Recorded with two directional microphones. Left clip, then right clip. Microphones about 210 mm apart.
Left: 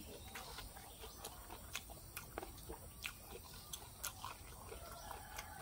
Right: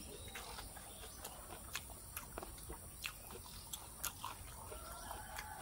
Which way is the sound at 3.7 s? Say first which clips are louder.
Right 2 dB; centre (ahead or behind).